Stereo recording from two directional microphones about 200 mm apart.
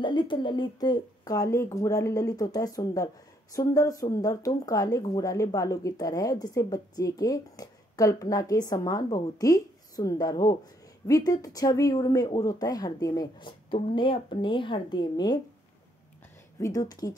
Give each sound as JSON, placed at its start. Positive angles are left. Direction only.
{"t": 0.0, "sound": "speech", "side_deg": 25}
{"t": 16.5, "sound": "speech", "side_deg": 15}